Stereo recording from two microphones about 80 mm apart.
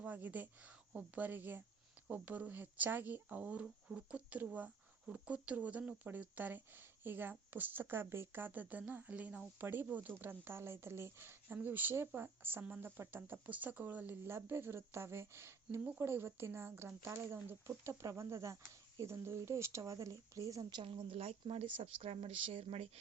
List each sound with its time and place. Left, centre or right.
0.0 s a woman's voice: right
14.3 s speech: right
20.7 s a woman's voice: right